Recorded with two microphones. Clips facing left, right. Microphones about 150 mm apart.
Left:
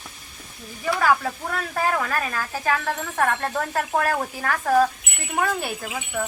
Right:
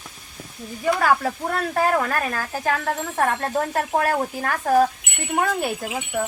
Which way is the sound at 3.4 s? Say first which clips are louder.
Right 2 dB; 30° right (ahead or behind).